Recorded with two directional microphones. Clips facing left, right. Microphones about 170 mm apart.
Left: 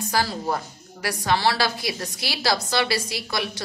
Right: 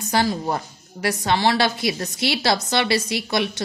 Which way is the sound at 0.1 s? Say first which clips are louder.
Right 4 dB; 25° right (ahead or behind).